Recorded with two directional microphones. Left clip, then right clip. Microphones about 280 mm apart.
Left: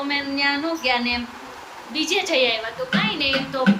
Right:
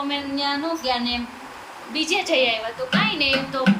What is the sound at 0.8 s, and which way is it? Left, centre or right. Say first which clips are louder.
Speech: left 4 dB; centre.